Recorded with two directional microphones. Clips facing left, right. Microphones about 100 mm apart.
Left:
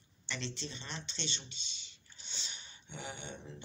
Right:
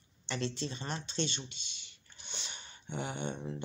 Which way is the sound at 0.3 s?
40° right (ahead or behind).